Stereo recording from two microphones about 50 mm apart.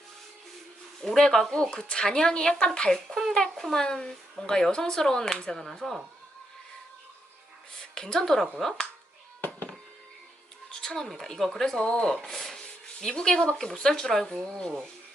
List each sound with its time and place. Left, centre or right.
1.0 s speech: centre
1.7 s speech: centre
3.1 s speech: centre
7.8 s a woman's voice: centre
10.7 s speech: centre